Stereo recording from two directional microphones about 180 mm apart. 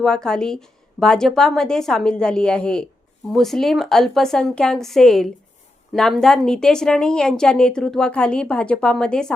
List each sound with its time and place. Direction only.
0.0 s a woman's voice: 5° left (ahead or behind)